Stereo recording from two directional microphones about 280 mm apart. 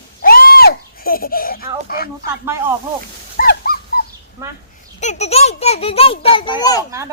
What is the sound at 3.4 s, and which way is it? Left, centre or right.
Dog, left.